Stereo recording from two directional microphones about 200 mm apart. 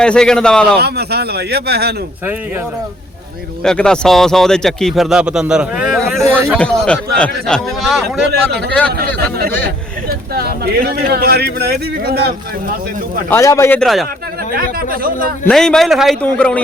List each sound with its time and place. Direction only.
0.0 s speech: 5° left (ahead or behind)
0.8 s speech: 55° right (ahead or behind)
3.6 s speech: 5° left (ahead or behind)
9.6 s speech: 50° right (ahead or behind)
13.3 s a man's voice: 15° left (ahead or behind)
15.4 s speech: 5° left (ahead or behind)